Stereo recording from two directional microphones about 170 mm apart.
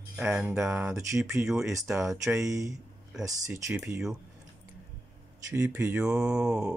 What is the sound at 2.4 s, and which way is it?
Speech, 20° right (ahead or behind).